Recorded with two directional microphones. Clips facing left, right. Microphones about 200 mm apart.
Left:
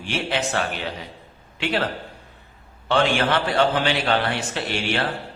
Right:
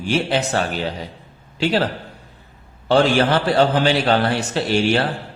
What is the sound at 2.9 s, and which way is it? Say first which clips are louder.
Speech: right 5 dB; 35° right (ahead or behind).